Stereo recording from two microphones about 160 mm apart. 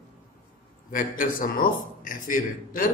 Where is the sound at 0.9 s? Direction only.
60° left (ahead or behind).